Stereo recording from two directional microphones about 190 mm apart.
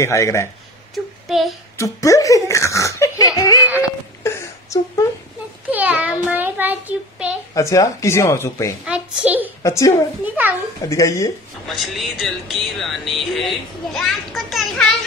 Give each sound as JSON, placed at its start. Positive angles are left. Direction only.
{"t": 0.0, "sound": "speech", "side_deg": 15}
{"t": 0.9, "sound": "a sound", "side_deg": 0}
{"t": 1.8, "sound": "speech", "side_deg": 15}
{"t": 4.2, "sound": "whimper", "side_deg": 15}
{"t": 5.7, "sound": "a child's voice", "side_deg": -10}
{"t": 7.5, "sound": "speech", "side_deg": 15}
{"t": 8.8, "sound": "a child's voice", "side_deg": -5}
{"t": 9.6, "sound": "speech", "side_deg": 15}
{"t": 10.2, "sound": "a child's voice", "side_deg": -10}
{"t": 10.9, "sound": "speech", "side_deg": 15}
{"t": 11.6, "sound": "a child's voice", "side_deg": 0}